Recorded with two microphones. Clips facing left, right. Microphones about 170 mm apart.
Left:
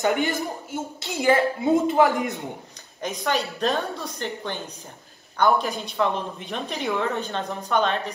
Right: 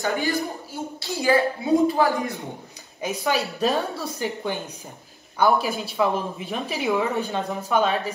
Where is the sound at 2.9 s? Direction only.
10° right (ahead or behind).